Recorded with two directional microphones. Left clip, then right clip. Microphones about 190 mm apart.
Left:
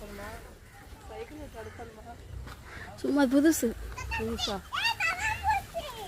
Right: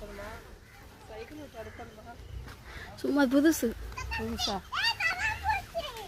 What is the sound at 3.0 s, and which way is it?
Speech, 5° right (ahead or behind).